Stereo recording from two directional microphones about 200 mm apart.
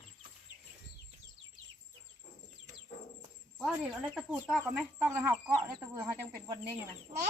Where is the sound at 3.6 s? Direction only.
Centre (ahead or behind); by 6.1 s 20° right (ahead or behind).